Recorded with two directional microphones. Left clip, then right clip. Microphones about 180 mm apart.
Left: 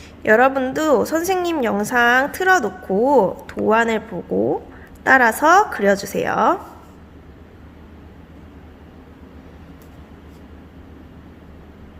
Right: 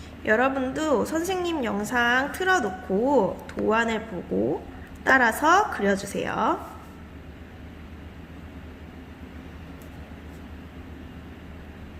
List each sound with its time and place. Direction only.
0.2 s a woman's voice: 40° left (ahead or behind)
5.0 s a woman's voice: 35° left (ahead or behind)